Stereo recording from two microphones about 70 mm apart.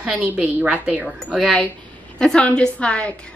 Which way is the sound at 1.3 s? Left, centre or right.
Centre.